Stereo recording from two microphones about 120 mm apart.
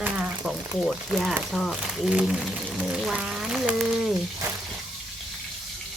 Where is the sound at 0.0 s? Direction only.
10° right (ahead or behind).